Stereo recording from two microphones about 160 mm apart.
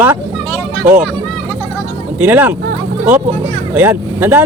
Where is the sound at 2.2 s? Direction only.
10° right (ahead or behind).